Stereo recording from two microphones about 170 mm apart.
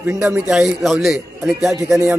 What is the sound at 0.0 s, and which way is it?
A man's voice, 10° right (ahead or behind).